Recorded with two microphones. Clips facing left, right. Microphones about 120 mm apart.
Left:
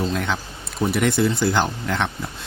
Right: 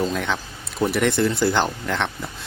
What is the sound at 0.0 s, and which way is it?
A man's voice, centre (ahead or behind).